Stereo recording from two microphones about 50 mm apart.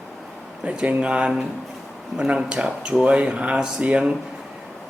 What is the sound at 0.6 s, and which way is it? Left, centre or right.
Speech, right.